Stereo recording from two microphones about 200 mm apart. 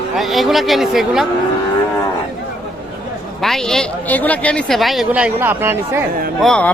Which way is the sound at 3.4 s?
Centre (ahead or behind).